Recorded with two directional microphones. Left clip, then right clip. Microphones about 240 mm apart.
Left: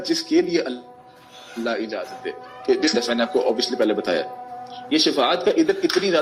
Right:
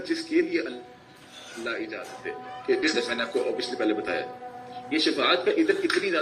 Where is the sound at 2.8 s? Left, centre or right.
Left.